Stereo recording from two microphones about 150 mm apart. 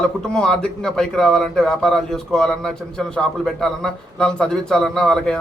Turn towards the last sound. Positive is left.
turn(degrees=5)  # may be behind; listen again after turning